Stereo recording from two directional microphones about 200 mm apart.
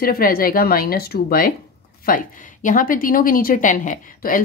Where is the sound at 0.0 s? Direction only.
45° left (ahead or behind).